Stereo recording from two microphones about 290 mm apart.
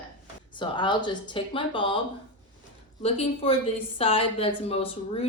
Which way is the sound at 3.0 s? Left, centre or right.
Centre.